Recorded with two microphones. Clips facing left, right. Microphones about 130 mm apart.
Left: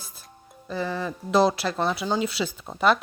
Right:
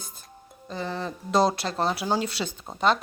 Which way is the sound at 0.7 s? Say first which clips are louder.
Left 3 dB; 30° right (ahead or behind).